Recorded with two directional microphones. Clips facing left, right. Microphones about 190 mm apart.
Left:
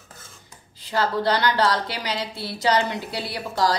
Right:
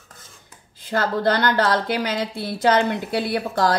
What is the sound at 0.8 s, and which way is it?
A woman's voice, 50° right (ahead or behind).